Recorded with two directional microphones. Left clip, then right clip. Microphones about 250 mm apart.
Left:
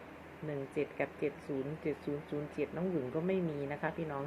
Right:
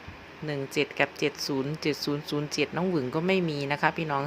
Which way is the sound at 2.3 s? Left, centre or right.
Right.